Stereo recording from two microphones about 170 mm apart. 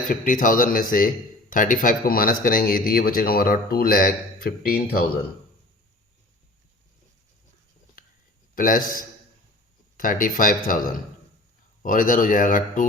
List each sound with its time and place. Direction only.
0.1 s speech: 50° left (ahead or behind)
8.5 s speech: 55° left (ahead or behind)